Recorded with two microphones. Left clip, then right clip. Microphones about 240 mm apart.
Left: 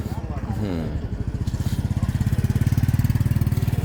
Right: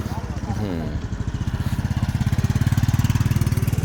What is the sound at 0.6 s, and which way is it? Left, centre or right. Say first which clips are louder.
Speech: even; centre.